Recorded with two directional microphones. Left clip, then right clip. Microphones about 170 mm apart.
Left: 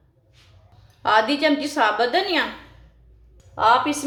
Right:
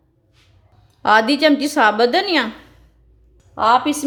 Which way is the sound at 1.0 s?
60° right (ahead or behind).